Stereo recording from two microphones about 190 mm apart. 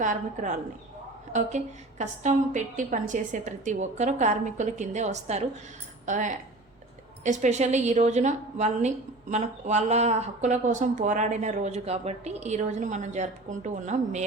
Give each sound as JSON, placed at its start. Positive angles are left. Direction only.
{"t": 0.0, "sound": "speech", "side_deg": -40}